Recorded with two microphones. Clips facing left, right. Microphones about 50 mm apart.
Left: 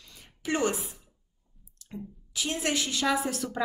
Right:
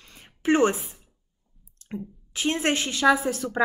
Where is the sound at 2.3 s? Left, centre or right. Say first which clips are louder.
Right 5 dB; right.